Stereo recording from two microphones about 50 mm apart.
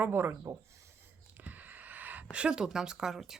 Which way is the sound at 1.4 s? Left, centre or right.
Right.